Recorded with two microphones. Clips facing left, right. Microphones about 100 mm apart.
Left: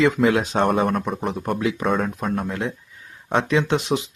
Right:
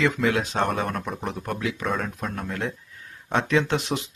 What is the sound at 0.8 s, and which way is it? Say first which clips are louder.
Speech: left 6 dB; 5° left (ahead or behind).